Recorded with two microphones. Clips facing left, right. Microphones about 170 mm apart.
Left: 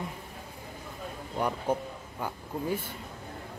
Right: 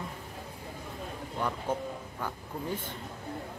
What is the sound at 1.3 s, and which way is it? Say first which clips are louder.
Speech: left 3 dB; 15° left (ahead or behind).